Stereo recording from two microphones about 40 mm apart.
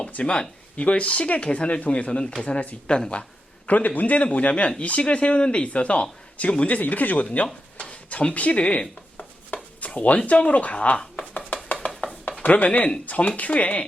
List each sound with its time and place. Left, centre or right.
0.1 s speech: left
2.0 s speech: left
2.4 s speech: left
2.8 s speech: left
3.7 s speech: left
7.8 s speech: left
9.8 s a sound: left
10.4 s speech: left
11.2 s a sound: left
12.4 s speech: left